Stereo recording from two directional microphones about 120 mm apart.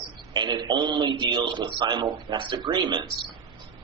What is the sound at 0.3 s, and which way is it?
A man's voice, 35° right (ahead or behind).